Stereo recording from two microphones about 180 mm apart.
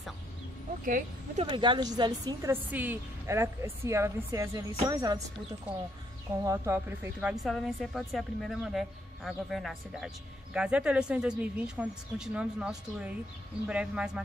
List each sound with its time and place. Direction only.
0.8 s speech: 50° right (ahead or behind)
1.4 s a woman's voice: 25° right (ahead or behind)
6.4 s a woman's voice: 15° right (ahead or behind)
7.4 s speech: centre (ahead or behind)